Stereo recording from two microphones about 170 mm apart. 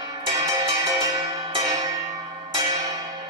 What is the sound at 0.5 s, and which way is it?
Music, 20° right (ahead or behind).